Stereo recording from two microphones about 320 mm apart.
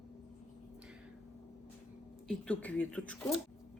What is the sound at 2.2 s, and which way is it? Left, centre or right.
Speech, centre.